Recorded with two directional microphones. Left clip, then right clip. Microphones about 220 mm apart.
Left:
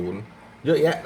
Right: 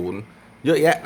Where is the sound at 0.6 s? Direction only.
35° right (ahead or behind).